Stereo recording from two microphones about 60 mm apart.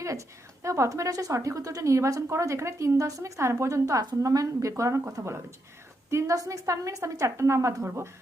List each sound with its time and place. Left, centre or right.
0.0 s a woman's voice: right